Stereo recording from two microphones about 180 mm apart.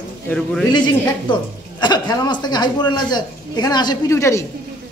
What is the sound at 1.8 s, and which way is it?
A man's voice, 25° left (ahead or behind).